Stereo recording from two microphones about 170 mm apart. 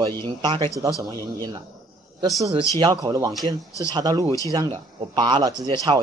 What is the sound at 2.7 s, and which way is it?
Speech, 25° right (ahead or behind).